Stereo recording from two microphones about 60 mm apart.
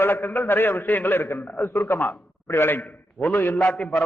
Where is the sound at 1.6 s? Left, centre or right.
Left.